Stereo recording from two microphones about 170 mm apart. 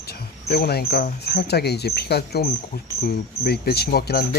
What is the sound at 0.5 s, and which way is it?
Speech, 70° left (ahead or behind).